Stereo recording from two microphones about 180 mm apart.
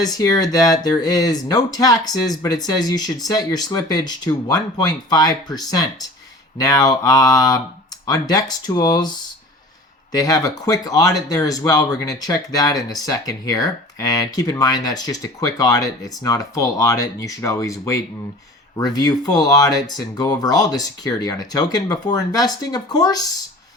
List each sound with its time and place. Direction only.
0.0 s speech: 20° left (ahead or behind)